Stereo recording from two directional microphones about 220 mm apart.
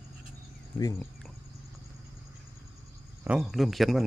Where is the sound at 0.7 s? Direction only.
15° left (ahead or behind).